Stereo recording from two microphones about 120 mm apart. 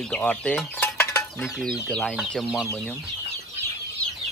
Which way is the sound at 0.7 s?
15° left (ahead or behind).